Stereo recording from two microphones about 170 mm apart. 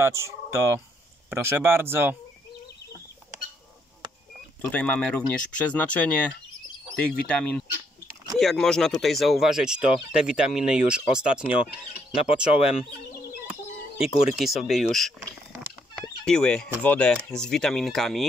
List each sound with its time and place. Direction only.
0.0 s speech: 15° right (ahead or behind)
4.6 s speech: 10° left (ahead or behind)
12.5 s chicken: 35° left (ahead or behind)
13.9 s speech: centre (ahead or behind)
15.9 s chicken: centre (ahead or behind)
16.8 s speech: 10° left (ahead or behind)